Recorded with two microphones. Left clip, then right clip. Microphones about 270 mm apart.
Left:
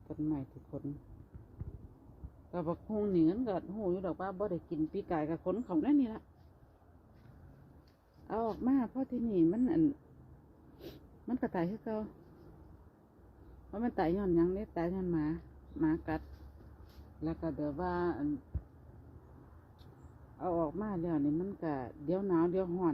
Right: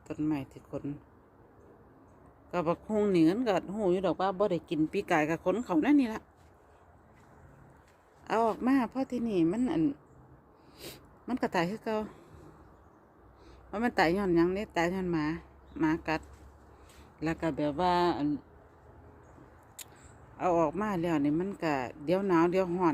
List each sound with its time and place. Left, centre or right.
0.1 s speech: centre
2.5 s speech: right
8.3 s a woman's voice: centre
13.7 s speech: centre
17.2 s speech: right
20.4 s speech: right